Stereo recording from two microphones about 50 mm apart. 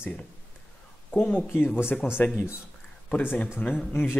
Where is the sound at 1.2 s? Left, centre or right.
Left.